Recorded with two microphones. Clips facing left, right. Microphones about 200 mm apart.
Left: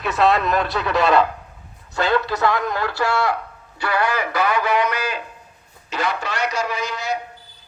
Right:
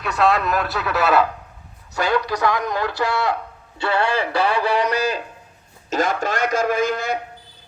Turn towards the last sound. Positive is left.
turn(degrees=-55)  # may be behind; listen again after turning